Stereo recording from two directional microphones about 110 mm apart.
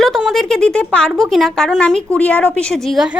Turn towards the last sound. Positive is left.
turn(degrees=0)  # may be behind; listen again after turning